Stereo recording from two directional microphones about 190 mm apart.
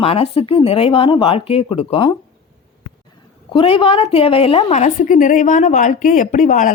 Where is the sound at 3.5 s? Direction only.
30° left (ahead or behind).